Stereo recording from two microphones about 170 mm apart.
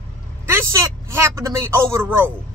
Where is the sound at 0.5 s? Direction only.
15° right (ahead or behind).